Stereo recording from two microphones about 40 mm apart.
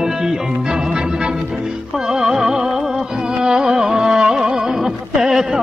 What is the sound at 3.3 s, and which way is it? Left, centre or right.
Speech, centre.